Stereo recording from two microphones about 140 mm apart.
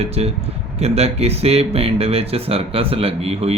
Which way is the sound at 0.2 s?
45° right (ahead or behind).